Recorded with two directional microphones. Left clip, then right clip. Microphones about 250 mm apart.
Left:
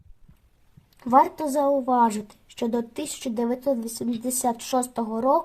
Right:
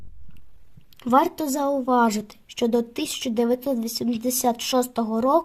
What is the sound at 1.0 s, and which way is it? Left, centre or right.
Speech, right.